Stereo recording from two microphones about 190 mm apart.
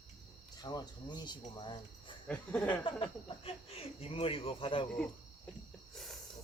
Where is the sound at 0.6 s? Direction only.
20° left (ahead or behind).